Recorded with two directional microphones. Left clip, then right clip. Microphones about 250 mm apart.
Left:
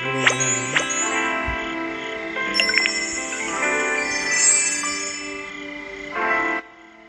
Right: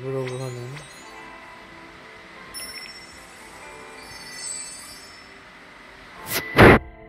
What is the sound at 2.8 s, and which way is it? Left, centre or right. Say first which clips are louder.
Music: left 17 dB; centre.